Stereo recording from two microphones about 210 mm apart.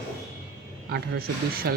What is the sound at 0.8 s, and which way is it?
Speech, 50° right (ahead or behind).